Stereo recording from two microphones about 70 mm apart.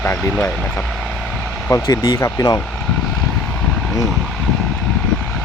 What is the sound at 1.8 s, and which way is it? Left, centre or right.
Speech, left.